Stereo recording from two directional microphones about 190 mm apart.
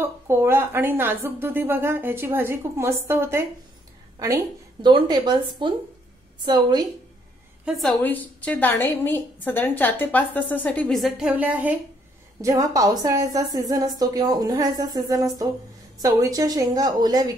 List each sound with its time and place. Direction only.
0.0 s a woman's voice: 15° right (ahead or behind)
4.8 s a woman's voice: 25° right (ahead or behind)
7.6 s a woman's voice: centre (ahead or behind); by 17.3 s 20° right (ahead or behind)